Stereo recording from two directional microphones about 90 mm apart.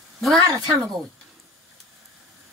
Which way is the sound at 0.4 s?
45° right (ahead or behind).